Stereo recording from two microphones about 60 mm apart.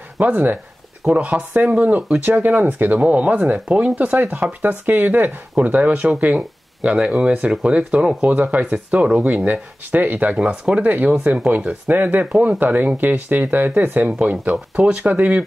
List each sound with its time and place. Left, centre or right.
0.2 s speech: right
8.3 s speech: right
10.3 s speech: centre